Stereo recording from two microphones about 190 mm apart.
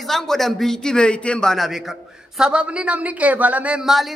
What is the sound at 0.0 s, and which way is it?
A man's voice, centre (ahead or behind).